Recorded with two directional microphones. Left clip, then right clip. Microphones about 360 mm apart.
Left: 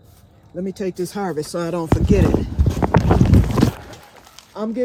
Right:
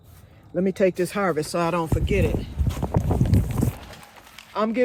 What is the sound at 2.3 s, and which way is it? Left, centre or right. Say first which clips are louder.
Clip-clop: left 9 dB; left.